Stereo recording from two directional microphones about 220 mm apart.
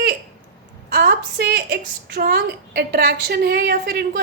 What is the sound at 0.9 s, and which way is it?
A woman's voice, 45° right (ahead or behind).